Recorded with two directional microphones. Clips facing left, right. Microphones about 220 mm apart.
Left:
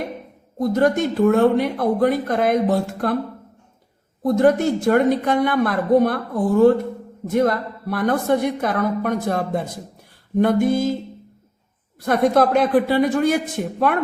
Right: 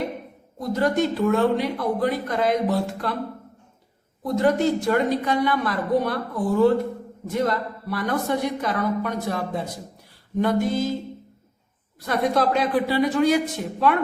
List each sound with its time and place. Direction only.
0.6 s a woman's voice: 50° left (ahead or behind)
4.2 s a woman's voice: 50° left (ahead or behind)
12.0 s a woman's voice: 50° left (ahead or behind)